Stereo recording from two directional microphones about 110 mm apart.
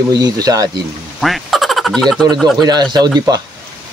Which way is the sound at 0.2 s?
35° right (ahead or behind).